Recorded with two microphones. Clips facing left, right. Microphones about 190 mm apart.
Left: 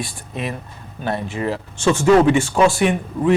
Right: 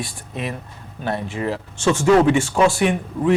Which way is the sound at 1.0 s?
15° left (ahead or behind).